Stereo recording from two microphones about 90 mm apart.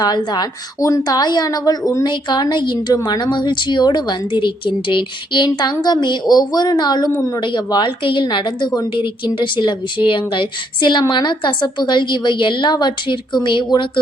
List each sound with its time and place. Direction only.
0.0 s a woman's voice: 50° left (ahead or behind)
2.0 s speech: 55° left (ahead or behind)
5.5 s a woman's voice: 50° left (ahead or behind)
7.1 s a woman's voice: 35° left (ahead or behind)
7.3 s speech: 60° left (ahead or behind)